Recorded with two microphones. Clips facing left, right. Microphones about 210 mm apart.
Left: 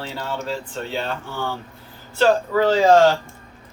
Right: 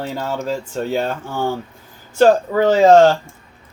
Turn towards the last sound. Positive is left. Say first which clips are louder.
# right 4 dB
turn(degrees=-50)  # may be behind; listen again after turning